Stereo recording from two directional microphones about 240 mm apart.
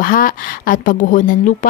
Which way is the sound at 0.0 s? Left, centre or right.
Left.